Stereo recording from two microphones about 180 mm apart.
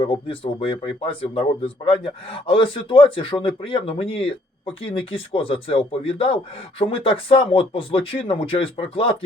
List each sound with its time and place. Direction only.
0.0 s speech: 30° left (ahead or behind)